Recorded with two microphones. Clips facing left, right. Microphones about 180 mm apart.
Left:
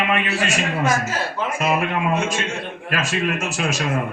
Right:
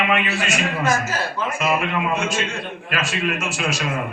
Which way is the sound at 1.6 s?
45° left (ahead or behind).